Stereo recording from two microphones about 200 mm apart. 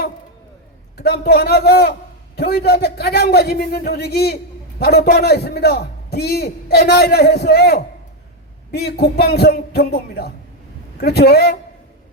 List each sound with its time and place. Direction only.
0.9 s a man's voice: 55° left (ahead or behind)